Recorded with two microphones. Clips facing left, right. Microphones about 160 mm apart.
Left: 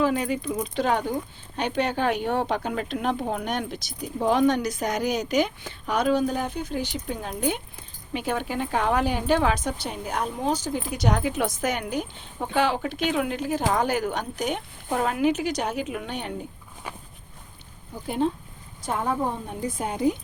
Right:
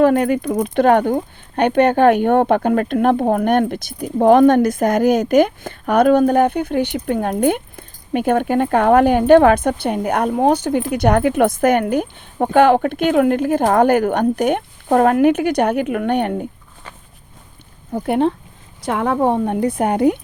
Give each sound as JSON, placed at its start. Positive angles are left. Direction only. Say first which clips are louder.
{"t": 0.0, "sound": "speech", "louder": "right 10 dB", "side_deg": -55}
{"t": 17.9, "sound": "speech", "louder": "right 9 dB", "side_deg": -65}
{"t": 18.8, "sound": "a woman's voice", "louder": "right 8 dB", "side_deg": -80}